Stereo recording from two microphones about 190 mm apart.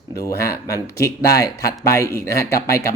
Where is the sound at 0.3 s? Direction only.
15° left (ahead or behind).